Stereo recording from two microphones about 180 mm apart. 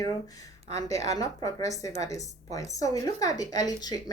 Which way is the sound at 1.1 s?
20° left (ahead or behind).